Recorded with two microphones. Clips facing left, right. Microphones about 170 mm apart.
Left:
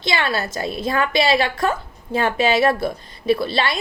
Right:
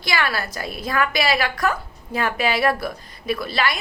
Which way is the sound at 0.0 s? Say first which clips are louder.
Left 2 dB; 25° left (ahead or behind).